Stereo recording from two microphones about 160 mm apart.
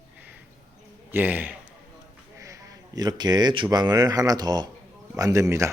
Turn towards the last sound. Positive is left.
turn(degrees=-20)  # may be behind; listen again after turning